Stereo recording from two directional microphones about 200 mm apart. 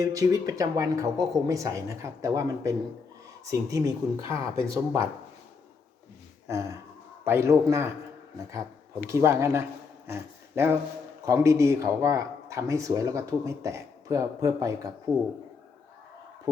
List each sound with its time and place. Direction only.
0.0 s speech: 15° right (ahead or behind)
6.5 s speech: 15° right (ahead or behind)
9.0 s speech: 15° right (ahead or behind)